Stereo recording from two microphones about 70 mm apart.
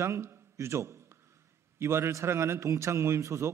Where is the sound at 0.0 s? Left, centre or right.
Right.